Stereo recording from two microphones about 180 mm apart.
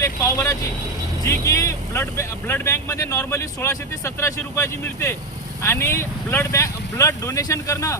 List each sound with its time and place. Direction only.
0.0 s speech: 15° left (ahead or behind)